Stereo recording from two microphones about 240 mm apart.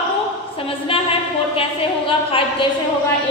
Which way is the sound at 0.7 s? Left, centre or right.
Left.